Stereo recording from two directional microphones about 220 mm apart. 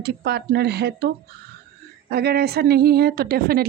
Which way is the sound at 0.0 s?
45° right (ahead or behind).